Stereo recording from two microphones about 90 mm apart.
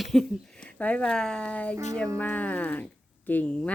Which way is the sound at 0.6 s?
15° left (ahead or behind).